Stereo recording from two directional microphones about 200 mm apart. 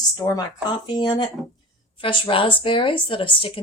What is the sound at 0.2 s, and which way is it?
Speech, 15° left (ahead or behind).